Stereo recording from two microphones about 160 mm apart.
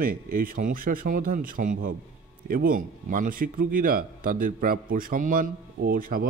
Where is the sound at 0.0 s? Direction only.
65° right (ahead or behind).